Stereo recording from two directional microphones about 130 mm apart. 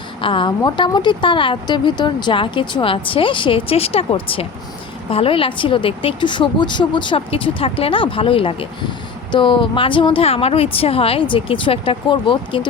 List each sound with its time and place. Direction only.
0.2 s a woman's voice: 40° left (ahead or behind)